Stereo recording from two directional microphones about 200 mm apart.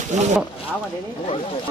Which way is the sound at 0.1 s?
35° right (ahead or behind).